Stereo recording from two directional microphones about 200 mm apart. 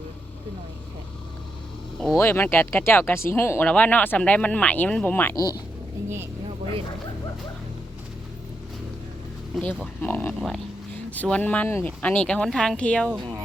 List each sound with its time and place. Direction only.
2.1 s speech: 10° left (ahead or behind)
9.6 s speech: 5° left (ahead or behind)